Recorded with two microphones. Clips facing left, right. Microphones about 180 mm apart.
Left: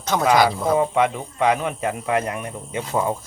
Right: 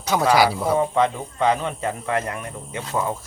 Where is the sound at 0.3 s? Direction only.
5° right (ahead or behind).